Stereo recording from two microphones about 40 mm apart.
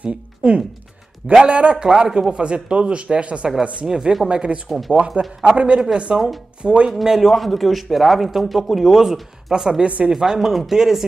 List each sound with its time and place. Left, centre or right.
0.0 s speech: right
3.9 s speech: centre
4.3 s speech: right
4.6 s a man's voice: centre
4.9 s speech: right
6.9 s a man's voice: centre
9.8 s speech: right
10.1 s speech: centre